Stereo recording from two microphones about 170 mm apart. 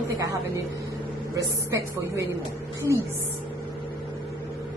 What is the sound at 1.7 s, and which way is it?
Speech, 15° right (ahead or behind).